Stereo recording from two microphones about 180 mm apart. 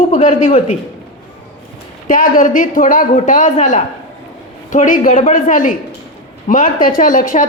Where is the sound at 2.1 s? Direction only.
50° left (ahead or behind).